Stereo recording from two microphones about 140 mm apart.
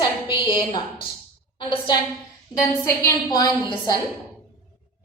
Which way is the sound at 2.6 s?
20° left (ahead or behind).